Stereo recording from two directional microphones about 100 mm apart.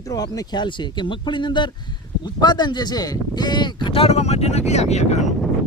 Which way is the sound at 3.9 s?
80° left.